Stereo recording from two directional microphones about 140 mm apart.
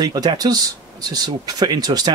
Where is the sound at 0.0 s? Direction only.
30° right (ahead or behind).